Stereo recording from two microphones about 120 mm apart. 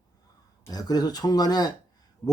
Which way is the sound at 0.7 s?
35° left (ahead or behind).